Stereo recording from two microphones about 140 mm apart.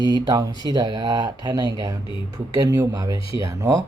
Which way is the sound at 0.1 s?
25° right (ahead or behind).